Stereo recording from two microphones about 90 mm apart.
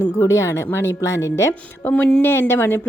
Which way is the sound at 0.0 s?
30° left (ahead or behind).